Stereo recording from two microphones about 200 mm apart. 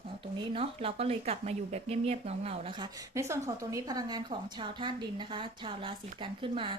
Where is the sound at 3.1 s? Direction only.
15° right (ahead or behind).